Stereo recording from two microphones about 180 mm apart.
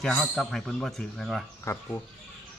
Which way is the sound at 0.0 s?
5° left (ahead or behind).